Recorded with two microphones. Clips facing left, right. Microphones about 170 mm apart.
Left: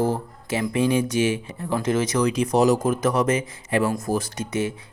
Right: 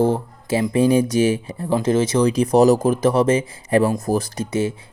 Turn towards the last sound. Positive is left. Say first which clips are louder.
# right 4 dB
turn(degrees=-30)  # may be behind; listen again after turning